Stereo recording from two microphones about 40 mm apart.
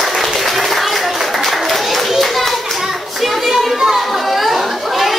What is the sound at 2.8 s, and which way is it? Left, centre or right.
Children playing, centre.